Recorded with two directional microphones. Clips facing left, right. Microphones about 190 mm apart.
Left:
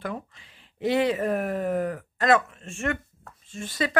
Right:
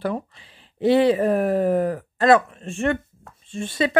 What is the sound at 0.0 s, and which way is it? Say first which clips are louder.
Speech: right 7 dB; 35° right (ahead or behind).